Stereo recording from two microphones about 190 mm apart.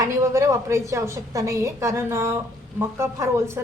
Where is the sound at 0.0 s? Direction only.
15° right (ahead or behind).